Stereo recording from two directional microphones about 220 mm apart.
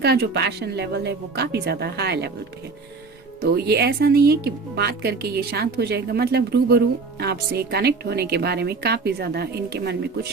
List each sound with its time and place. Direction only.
0.0 s speech: 50° right (ahead or behind)
3.4 s speech: 45° right (ahead or behind)